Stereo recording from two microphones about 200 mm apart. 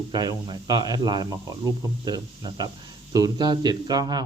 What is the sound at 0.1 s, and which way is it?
A man's voice, 20° right (ahead or behind).